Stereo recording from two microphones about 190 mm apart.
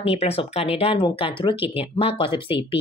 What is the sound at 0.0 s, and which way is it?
Speech, 30° left (ahead or behind).